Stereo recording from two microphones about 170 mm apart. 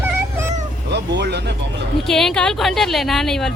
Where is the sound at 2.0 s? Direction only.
Centre (ahead or behind).